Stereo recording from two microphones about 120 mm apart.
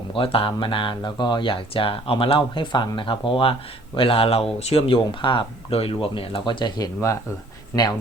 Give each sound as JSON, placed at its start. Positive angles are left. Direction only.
{"t": 0.1, "sound": "speech", "side_deg": 50}